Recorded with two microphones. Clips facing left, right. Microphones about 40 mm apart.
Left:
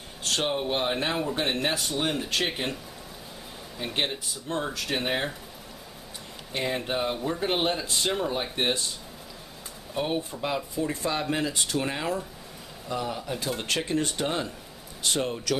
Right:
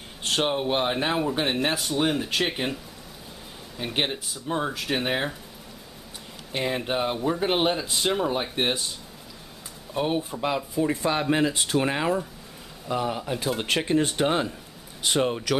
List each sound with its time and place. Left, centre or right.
0.2 s speech: centre
6.5 s speech: centre
9.9 s speech: centre